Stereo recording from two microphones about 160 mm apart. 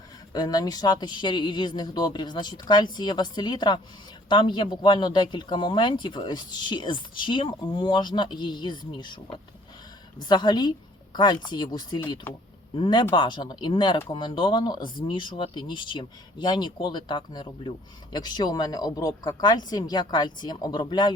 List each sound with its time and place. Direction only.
0.3 s speech: 25° left (ahead or behind)
10.2 s speech: 25° left (ahead or behind)
12.3 s speech: 15° left (ahead or behind)
12.7 s speech: 30° left (ahead or behind)